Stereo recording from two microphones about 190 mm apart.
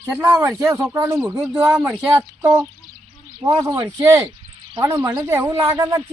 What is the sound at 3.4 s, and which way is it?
A man's voice, 15° right (ahead or behind).